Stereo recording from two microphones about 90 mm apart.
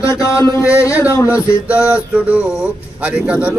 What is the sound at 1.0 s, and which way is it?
Speech, 30° left (ahead or behind).